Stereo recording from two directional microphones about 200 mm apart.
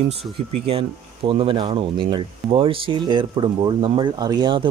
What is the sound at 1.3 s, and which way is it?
Speech, 25° right (ahead or behind).